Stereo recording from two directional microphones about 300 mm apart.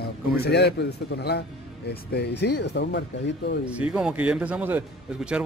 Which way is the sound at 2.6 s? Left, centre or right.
Left.